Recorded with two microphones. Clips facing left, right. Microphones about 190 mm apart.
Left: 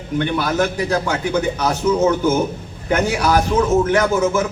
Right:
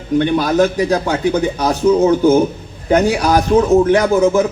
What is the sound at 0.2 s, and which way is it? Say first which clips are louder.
Speech: right 5 dB; 35° right (ahead or behind).